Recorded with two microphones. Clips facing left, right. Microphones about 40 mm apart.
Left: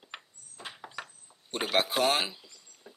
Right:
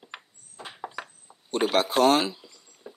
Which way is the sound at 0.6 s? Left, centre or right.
Centre.